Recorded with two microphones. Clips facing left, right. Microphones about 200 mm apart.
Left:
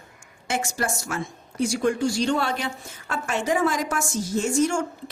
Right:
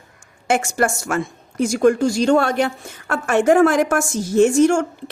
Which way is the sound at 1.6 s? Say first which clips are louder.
Right 7 dB; 50° right (ahead or behind).